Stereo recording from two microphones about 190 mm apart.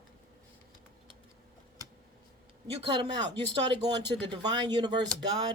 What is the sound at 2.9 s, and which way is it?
Speech, 25° right (ahead or behind).